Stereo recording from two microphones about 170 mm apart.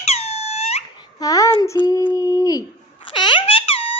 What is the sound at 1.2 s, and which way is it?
Child singing, 20° left (ahead or behind).